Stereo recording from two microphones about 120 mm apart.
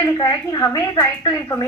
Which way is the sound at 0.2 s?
35° left (ahead or behind).